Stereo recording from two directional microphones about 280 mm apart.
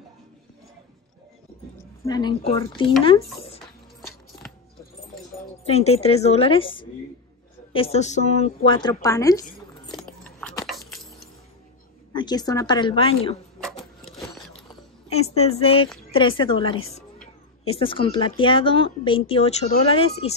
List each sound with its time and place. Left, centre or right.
2.0 s a woman's voice: centre
5.7 s a woman's voice: left
9.9 s a sound: centre
12.1 s a woman's voice: centre
13.6 s sewing machine: centre
15.0 s speech: left